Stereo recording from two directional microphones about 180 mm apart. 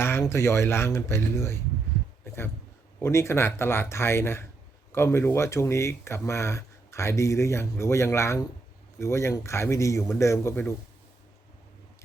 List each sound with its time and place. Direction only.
0.0 s speech: 15° left (ahead or behind)
3.0 s speech: 15° left (ahead or behind)